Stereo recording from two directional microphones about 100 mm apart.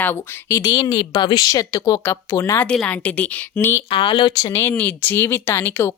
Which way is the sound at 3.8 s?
55° left (ahead or behind).